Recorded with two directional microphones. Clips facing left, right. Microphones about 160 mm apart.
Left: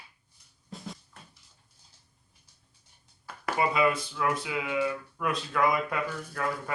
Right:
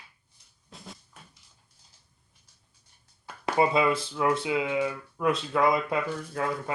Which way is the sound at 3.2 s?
25° right (ahead or behind).